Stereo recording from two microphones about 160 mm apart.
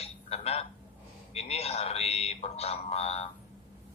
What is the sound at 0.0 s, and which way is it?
Telephone, 40° left (ahead or behind).